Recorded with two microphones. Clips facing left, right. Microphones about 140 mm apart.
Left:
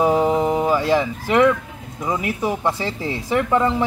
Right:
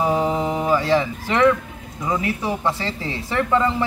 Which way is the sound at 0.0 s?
15° left (ahead or behind).